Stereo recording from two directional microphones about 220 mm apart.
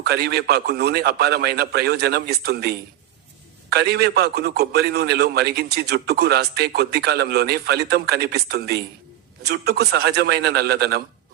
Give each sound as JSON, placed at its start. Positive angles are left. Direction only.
{"t": 0.0, "sound": "a man's voice", "side_deg": -45}